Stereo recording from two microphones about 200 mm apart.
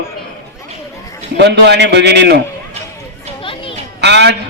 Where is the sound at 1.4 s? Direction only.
60° right (ahead or behind).